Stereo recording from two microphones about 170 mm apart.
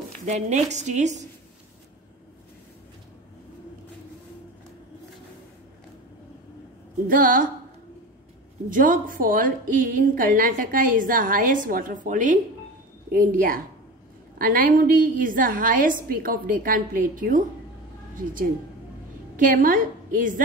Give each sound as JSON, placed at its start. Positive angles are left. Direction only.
{"t": 0.3, "sound": "a woman's voice", "side_deg": -40}
{"t": 7.1, "sound": "a woman's voice", "side_deg": -55}
{"t": 8.6, "sound": "a woman's voice", "side_deg": -55}